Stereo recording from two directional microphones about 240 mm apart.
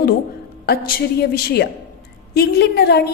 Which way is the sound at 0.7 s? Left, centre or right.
Left.